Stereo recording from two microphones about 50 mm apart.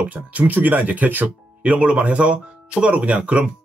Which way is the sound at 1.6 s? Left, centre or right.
Right.